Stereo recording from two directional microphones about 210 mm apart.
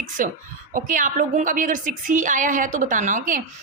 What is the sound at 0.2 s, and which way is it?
A woman's voice, 40° right (ahead or behind).